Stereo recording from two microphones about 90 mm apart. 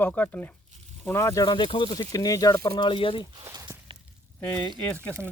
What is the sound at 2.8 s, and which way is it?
Speech, 75° left (ahead or behind).